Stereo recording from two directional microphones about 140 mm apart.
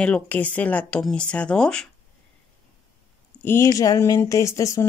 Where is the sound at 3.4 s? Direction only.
20° left (ahead or behind).